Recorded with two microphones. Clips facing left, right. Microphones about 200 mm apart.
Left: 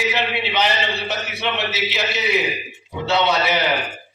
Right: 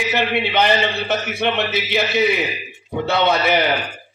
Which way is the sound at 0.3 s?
50° right (ahead or behind).